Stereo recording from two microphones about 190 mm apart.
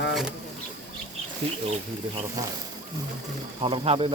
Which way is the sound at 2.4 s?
20° right (ahead or behind).